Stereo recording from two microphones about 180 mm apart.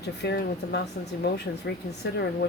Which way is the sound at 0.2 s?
70° left (ahead or behind).